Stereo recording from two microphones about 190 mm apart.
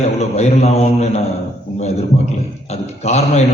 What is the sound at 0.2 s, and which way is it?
A man's voice, 35° left (ahead or behind).